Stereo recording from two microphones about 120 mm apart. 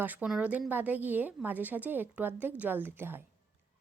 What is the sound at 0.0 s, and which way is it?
A woman's voice, 15° right (ahead or behind).